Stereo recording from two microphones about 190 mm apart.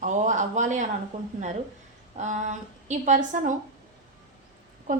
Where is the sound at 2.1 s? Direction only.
40° right (ahead or behind).